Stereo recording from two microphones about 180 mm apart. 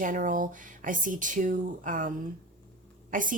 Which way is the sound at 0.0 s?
50° right (ahead or behind).